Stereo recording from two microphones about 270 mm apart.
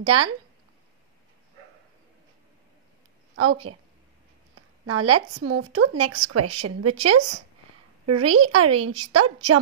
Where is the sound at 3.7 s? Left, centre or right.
Right.